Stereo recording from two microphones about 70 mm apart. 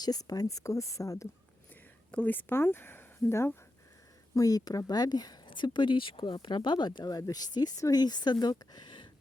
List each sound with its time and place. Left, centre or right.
0.0 s speech: left
2.1 s speech: left
4.4 s speech: left
6.2 s speech: left